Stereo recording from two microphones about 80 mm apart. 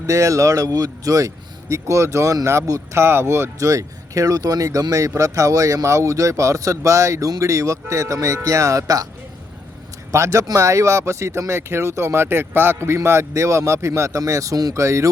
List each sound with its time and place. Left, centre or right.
0.0 s speech: right
3.7 s speech: right
10.1 s speech: right